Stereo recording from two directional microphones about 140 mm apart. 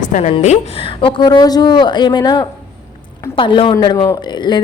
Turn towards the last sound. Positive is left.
turn(degrees=30)  # may be behind; listen again after turning